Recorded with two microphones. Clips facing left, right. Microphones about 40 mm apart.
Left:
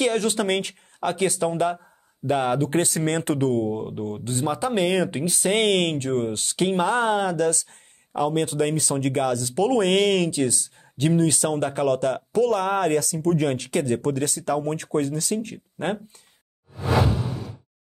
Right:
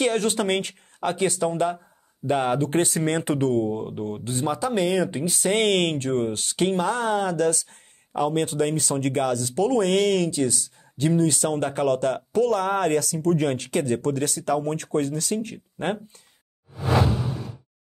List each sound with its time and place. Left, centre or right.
0.0 s speech: centre
4.6 s speech: centre
5.2 s speech: centre
6.7 s speech: left
7.2 s speech: centre